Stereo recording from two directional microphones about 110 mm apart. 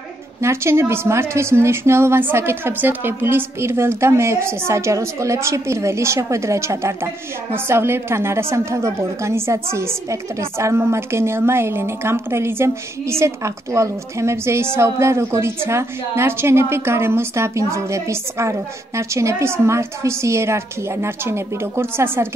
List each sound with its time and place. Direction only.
0.4 s a woman's voice: 25° right (ahead or behind)